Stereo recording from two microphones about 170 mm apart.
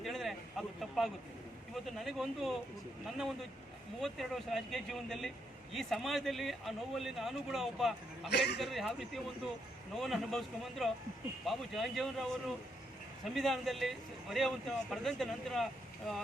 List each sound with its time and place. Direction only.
0.0 s a sound: centre (ahead or behind)
1.7 s speech: centre (ahead or behind)
4.0 s speech: centre (ahead or behind)
8.3 s speech: 80° left
8.5 s speech: centre (ahead or behind)